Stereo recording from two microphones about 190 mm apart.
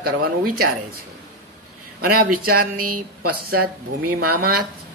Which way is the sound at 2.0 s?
50° right (ahead or behind).